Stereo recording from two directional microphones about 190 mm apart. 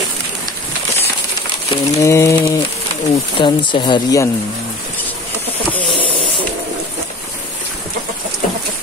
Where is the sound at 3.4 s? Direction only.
25° left (ahead or behind).